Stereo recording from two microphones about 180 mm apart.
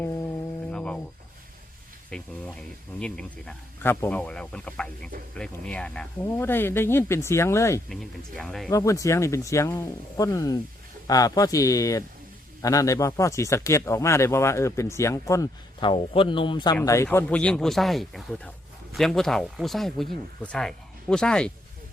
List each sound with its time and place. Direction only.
0.7 s a sound: 5° left (ahead or behind)
2.0 s speech: 5° left (ahead or behind)
8.4 s speech: centre (ahead or behind)
8.7 s speech: 15° left (ahead or behind)
16.8 s speech: 15° left (ahead or behind)